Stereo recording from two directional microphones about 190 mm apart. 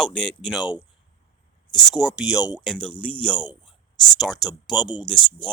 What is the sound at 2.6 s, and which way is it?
Speech, 5° left (ahead or behind).